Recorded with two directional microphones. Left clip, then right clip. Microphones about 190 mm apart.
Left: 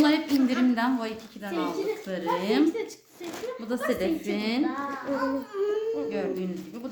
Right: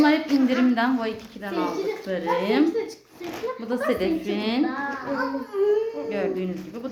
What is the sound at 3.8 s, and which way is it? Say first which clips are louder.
Speech: right 3 dB; centre (ahead or behind).